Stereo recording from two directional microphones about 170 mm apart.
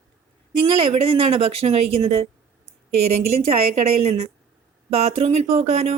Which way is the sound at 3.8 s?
35° right (ahead or behind).